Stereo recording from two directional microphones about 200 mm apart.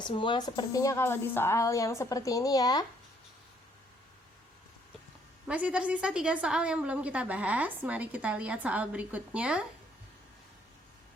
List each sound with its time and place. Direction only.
0.0 s speech: 25° left (ahead or behind)
5.5 s a woman's voice: 5° right (ahead or behind)